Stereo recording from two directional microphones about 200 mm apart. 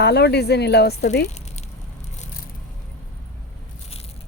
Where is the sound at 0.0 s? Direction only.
55° left (ahead or behind).